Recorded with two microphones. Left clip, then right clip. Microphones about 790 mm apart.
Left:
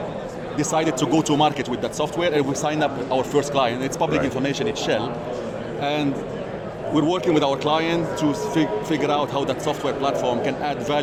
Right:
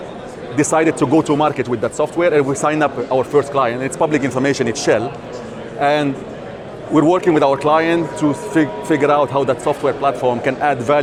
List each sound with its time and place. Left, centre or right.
0.5 s speech: right